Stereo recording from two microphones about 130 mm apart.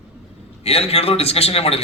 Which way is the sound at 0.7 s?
50° left (ahead or behind).